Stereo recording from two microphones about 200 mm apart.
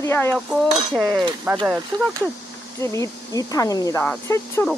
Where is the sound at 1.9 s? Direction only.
20° right (ahead or behind).